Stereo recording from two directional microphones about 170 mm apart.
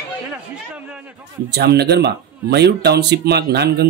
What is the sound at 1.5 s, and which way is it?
Speech, 75° right (ahead or behind).